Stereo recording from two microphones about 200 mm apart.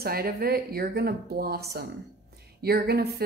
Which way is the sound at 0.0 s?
50° right (ahead or behind).